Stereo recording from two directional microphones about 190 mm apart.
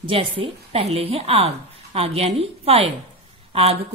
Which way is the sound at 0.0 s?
25° right (ahead or behind).